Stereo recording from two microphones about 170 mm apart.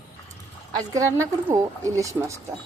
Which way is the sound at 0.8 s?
20° right (ahead or behind).